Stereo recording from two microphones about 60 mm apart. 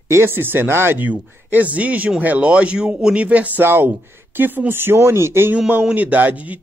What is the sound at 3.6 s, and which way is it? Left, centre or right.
A man's voice, right.